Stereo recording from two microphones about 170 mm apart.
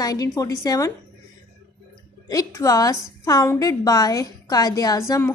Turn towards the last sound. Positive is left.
turn(degrees=20)  # may be behind; listen again after turning